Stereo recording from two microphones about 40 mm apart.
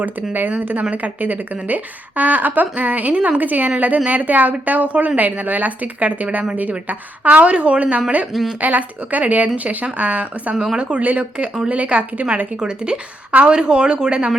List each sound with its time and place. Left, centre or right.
0.0 s speech: right
0.9 s speech: right
10.8 s speech: right
12.5 s speech: right